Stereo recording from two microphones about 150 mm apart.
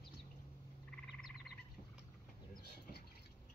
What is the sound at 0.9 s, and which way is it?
Frog, 5° left (ahead or behind).